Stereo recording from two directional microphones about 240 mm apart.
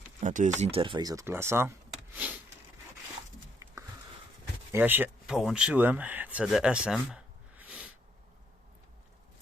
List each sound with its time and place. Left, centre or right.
0.2 s speech: right; by 1.7 s centre
2.1 s a sound: centre
4.7 s speech: centre